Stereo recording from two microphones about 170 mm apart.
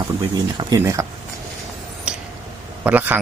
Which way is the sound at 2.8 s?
10° right (ahead or behind).